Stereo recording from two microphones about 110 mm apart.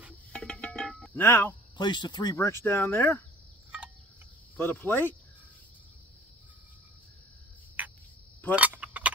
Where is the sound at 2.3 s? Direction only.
25° left (ahead or behind).